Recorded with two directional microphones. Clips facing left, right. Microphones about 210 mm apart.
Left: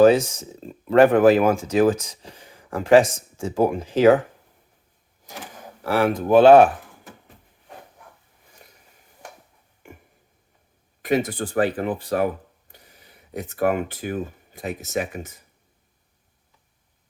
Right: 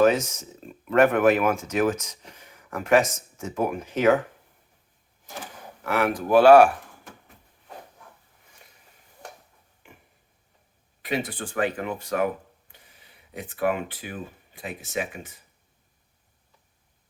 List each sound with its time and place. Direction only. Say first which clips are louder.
0.0 s speech: left 5 dB; 30° left (ahead or behind)
5.8 s speech: left 4 dB; 30° left (ahead or behind)
9.8 s a sound: left 7 dB; 45° left (ahead or behind)
11.0 s speech: left 7 dB; 45° left (ahead or behind)